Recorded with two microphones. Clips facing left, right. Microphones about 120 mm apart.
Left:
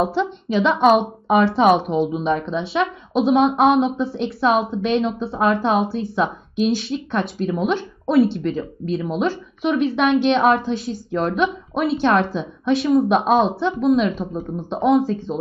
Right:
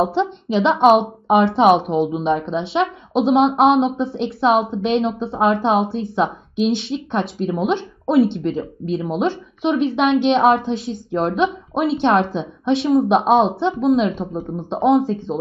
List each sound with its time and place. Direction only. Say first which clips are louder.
0.0 s a woman's voice: right 2 dB; 25° right (ahead or behind)